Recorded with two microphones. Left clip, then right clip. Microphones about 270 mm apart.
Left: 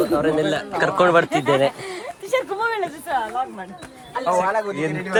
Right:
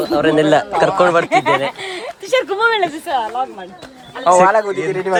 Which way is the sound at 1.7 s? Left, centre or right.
Right.